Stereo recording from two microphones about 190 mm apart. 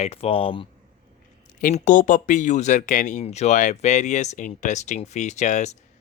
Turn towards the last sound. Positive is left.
turn(degrees=35)  # may be behind; listen again after turning